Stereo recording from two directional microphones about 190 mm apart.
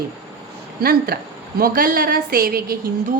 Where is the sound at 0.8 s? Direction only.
55° right (ahead or behind).